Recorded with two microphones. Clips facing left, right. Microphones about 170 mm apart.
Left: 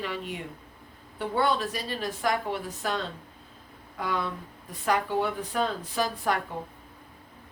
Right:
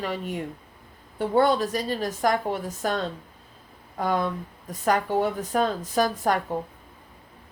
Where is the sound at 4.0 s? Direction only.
45° right (ahead or behind).